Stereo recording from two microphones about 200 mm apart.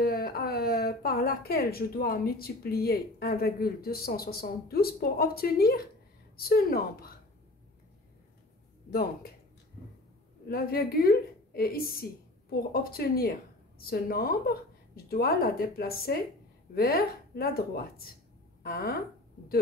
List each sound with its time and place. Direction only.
0.0 s a woman's voice: 50° left (ahead or behind)
8.9 s a woman's voice: 50° left (ahead or behind)
10.5 s a woman's voice: 50° left (ahead or behind)